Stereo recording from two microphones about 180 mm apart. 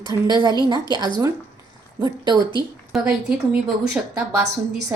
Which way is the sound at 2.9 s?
Centre (ahead or behind).